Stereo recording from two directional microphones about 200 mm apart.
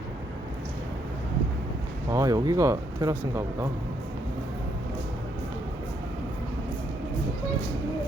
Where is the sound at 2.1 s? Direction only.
15° right (ahead or behind).